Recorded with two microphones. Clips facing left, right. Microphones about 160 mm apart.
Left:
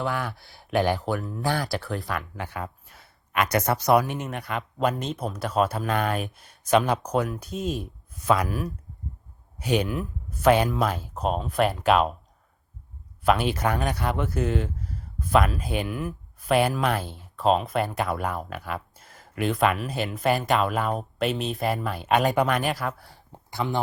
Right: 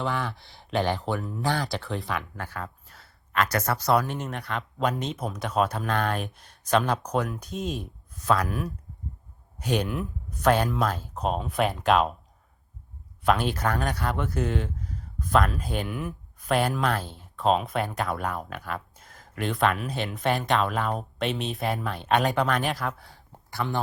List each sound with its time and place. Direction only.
0.0 s speech: 5° left (ahead or behind)
2.4 s speech: 10° left (ahead or behind)
13.2 s speech: 10° left (ahead or behind)
23.3 s speech: 20° left (ahead or behind)